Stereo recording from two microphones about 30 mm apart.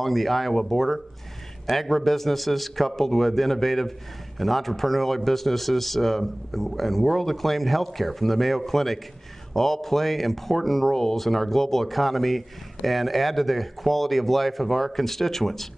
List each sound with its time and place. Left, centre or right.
0.0 s a man's voice: centre